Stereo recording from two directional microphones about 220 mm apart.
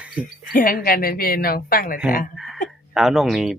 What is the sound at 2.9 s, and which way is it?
Speech, centre (ahead or behind).